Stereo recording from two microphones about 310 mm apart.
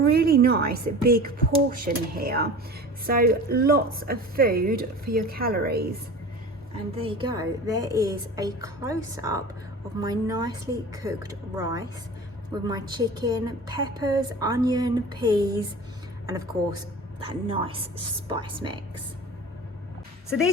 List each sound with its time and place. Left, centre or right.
0.1 s speech: right
6.9 s a woman's voice: centre